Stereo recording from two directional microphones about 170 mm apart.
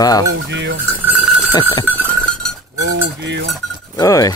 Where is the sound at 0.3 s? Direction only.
90° right.